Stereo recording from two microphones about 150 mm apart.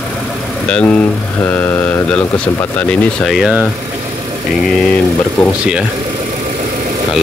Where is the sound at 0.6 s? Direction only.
5° left (ahead or behind).